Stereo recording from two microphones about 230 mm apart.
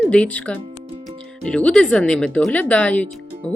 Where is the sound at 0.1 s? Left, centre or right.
Centre.